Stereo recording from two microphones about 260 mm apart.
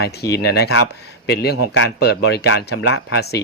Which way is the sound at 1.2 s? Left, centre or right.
Left.